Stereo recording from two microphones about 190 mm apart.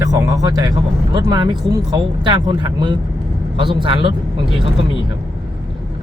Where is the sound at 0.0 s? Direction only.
20° right (ahead or behind).